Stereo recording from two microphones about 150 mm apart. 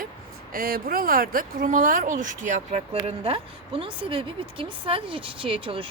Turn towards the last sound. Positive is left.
turn(degrees=-35)  # may be behind; listen again after turning